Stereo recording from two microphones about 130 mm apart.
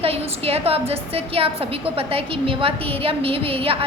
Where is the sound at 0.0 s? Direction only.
50° right (ahead or behind).